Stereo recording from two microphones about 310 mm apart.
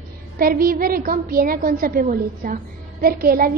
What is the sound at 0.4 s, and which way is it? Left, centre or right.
A woman's voice, right.